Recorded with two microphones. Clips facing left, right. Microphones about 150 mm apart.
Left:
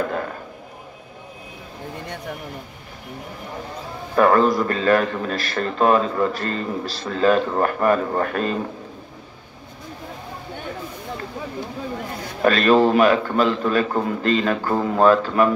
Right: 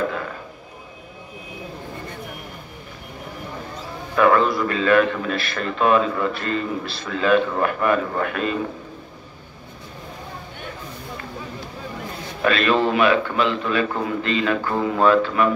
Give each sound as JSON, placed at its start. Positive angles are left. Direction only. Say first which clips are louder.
{"t": 4.1, "sound": "a man's voice", "louder": "left 1 dB", "side_deg": 40}
{"t": 12.4, "sound": "a man's voice", "louder": "left 4 dB", "side_deg": 40}